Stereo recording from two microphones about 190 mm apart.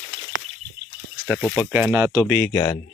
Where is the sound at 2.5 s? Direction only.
20° left (ahead or behind).